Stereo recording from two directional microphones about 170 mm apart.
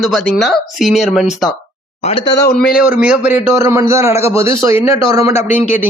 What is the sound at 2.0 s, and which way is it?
Speech, 30° left (ahead or behind).